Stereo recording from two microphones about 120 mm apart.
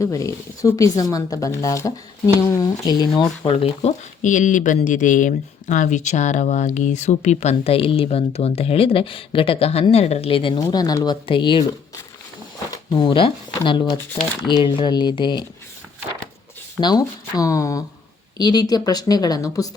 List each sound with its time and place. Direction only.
0.0 s speech: 25° left (ahead or behind)
3.5 s speech: 60° left (ahead or behind); by 11.6 s 45° left (ahead or behind)
12.9 s speech: 45° left (ahead or behind)
16.8 s speech: 30° left (ahead or behind)